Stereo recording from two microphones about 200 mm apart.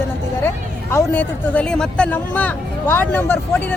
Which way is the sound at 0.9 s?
10° left (ahead or behind).